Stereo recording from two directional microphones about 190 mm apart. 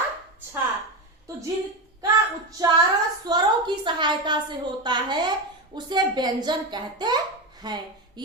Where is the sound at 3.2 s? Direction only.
25° right (ahead or behind).